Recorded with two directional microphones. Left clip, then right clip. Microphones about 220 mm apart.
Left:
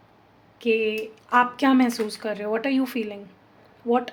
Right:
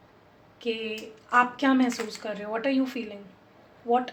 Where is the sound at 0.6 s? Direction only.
50° left (ahead or behind).